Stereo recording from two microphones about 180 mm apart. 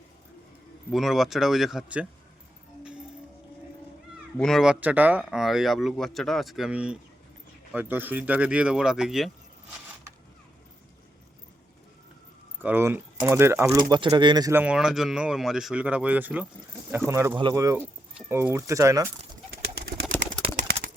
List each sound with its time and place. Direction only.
0.9 s speech: centre (ahead or behind)
4.4 s speech: centre (ahead or behind)
12.6 s speech: 10° right (ahead or behind)
14.5 s speech: 5° right (ahead or behind)